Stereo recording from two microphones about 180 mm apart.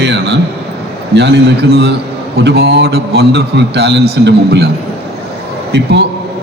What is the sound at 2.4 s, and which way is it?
A man's voice, 65° right (ahead or behind).